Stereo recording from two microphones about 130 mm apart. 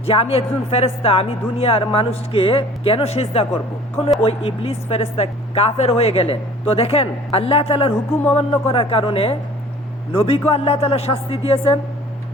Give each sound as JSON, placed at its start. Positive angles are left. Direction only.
{"t": 0.0, "sound": "a woman's voice", "side_deg": 50}